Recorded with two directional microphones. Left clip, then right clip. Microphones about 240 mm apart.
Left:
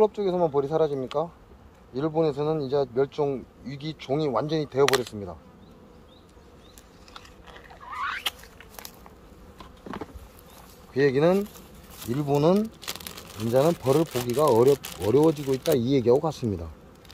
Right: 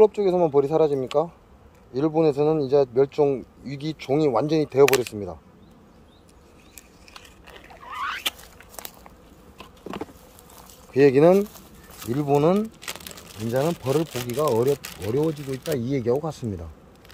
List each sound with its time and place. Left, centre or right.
0.0 s a man's voice: right
7.2 s rodents: right
9.6 s insect: right
10.9 s speech: right
12.1 s speech: centre